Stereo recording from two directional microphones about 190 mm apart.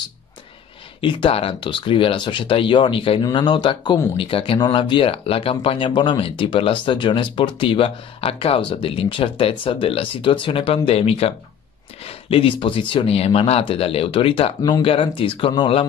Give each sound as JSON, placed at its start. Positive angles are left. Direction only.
{"t": 1.0, "sound": "speech", "side_deg": 30}